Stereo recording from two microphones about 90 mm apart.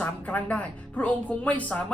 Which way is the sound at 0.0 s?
15° left (ahead or behind).